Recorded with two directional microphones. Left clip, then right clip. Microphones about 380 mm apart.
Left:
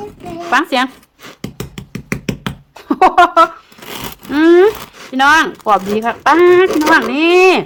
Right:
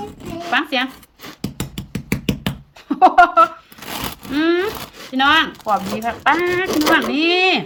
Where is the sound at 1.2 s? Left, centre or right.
Centre.